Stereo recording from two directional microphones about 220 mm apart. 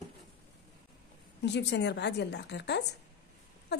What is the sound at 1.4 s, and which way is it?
A woman's voice, 50° left (ahead or behind).